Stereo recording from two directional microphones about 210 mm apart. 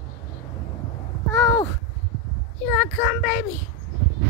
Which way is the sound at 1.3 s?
10° left (ahead or behind).